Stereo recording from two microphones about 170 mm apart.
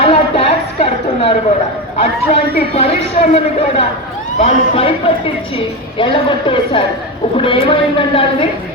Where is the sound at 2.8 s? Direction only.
35° left (ahead or behind).